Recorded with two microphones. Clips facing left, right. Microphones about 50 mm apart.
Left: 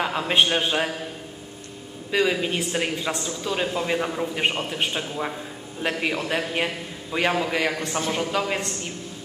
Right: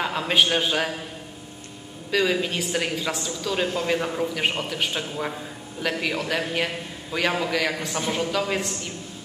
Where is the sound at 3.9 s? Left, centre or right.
Centre.